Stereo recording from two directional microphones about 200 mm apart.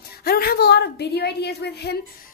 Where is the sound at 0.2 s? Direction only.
50° left (ahead or behind).